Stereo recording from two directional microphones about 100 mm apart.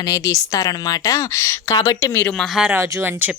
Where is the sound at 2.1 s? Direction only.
20° left (ahead or behind).